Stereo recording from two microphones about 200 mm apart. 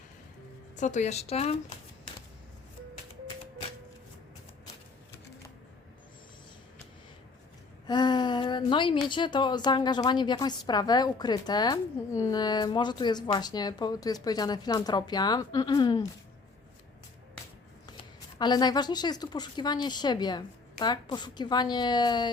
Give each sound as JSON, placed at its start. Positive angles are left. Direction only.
{"t": 0.8, "sound": "speech", "side_deg": 35}
{"t": 7.9, "sound": "a woman's voice", "side_deg": 20}
{"t": 17.8, "sound": "a woman's voice", "side_deg": 20}